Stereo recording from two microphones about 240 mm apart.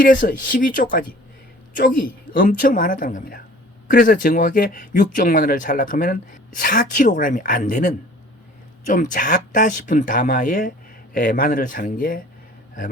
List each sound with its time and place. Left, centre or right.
0.0 s speech: left
8.9 s speech: left